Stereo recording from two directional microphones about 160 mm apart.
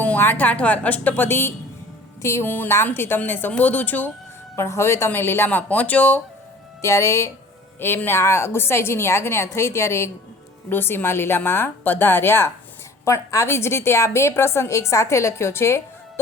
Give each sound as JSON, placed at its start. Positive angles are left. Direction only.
{"t": 0.0, "sound": "a woman's voice", "side_deg": 10}